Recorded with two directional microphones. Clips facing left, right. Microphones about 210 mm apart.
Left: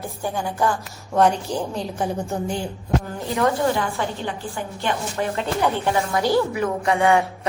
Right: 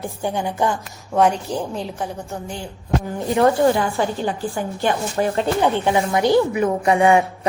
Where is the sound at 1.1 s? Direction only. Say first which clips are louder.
Right 1 dB; centre (ahead or behind).